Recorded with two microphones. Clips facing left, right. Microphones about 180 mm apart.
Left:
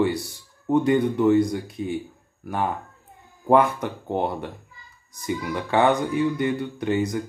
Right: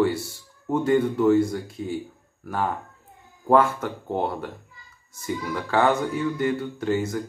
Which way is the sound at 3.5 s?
15° left (ahead or behind).